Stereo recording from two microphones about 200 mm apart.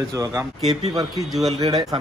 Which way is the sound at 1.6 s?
20° right (ahead or behind).